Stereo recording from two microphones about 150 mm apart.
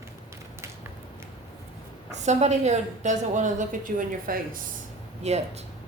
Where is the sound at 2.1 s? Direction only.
50° right (ahead or behind); by 4.6 s 65° right (ahead or behind).